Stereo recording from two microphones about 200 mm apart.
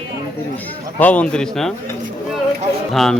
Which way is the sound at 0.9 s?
5° left (ahead or behind).